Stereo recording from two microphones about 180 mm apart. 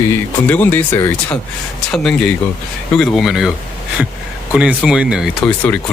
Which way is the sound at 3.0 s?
Centre (ahead or behind).